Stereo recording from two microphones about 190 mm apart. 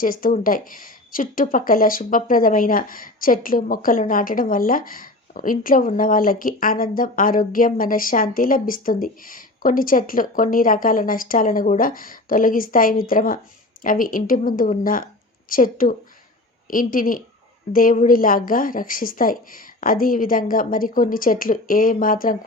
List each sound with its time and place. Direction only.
0.0 s speech: 45° left (ahead or behind)